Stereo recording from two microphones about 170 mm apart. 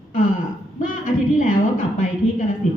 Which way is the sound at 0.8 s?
50° left (ahead or behind).